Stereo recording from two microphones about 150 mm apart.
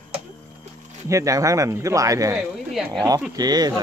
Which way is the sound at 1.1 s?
20° right (ahead or behind).